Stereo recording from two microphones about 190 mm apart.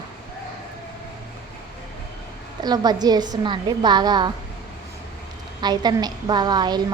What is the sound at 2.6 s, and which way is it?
A woman's voice, 20° right (ahead or behind).